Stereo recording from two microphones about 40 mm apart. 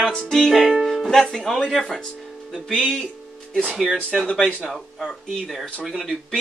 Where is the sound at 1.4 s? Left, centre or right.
Centre.